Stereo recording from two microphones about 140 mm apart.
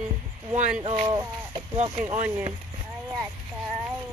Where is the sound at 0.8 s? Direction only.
30° right (ahead or behind).